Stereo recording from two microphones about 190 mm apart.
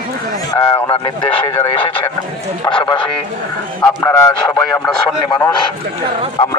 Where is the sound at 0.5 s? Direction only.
25° left (ahead or behind).